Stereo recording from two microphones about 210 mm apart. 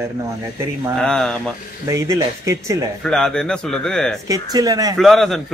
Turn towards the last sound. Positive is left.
turn(degrees=0)  # may be behind; listen again after turning